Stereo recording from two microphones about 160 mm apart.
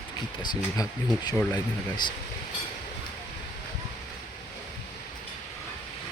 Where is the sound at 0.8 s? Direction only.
25° left (ahead or behind).